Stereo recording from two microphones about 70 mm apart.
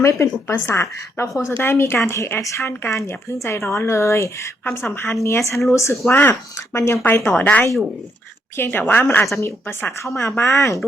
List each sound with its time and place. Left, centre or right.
0.0 s speech: left
4.6 s speech: left
5.2 s speech: left
6.1 s speech: left
6.7 s speech: left
7.3 s a woman's voice: left